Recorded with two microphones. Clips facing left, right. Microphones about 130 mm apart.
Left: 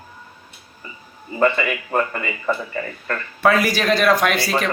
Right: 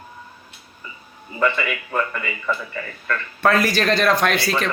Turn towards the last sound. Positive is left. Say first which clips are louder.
# left 1 dB
turn(degrees=5)  # may be behind; listen again after turning